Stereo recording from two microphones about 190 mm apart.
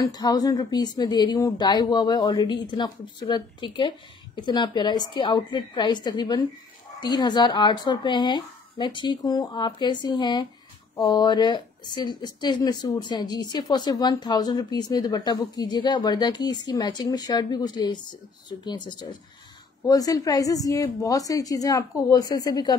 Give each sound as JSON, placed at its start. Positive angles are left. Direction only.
{"t": 0.0, "sound": "a woman's voice", "side_deg": 20}